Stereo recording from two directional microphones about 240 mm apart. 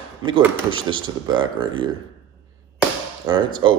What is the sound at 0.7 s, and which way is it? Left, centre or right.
Speech, right.